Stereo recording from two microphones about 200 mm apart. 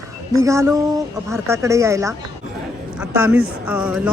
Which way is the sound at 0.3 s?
15° right (ahead or behind).